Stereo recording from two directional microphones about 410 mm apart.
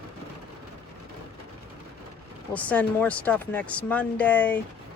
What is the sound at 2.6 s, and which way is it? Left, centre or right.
Speech, centre.